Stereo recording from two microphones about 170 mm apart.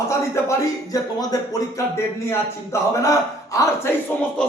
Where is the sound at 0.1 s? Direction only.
15° left (ahead or behind).